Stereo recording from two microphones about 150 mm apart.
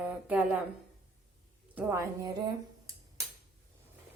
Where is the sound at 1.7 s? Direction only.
15° right (ahead or behind).